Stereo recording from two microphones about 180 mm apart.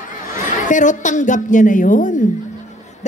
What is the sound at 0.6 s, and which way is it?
A woman's voice, 45° left (ahead or behind).